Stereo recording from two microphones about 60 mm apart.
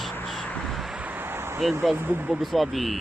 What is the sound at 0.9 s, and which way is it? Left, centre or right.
Vehicle, right.